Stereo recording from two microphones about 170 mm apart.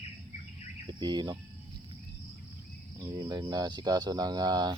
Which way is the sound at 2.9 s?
20° right (ahead or behind).